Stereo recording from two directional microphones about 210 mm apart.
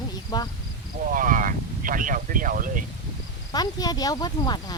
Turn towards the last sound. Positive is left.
turn(degrees=20)  # may be behind; listen again after turning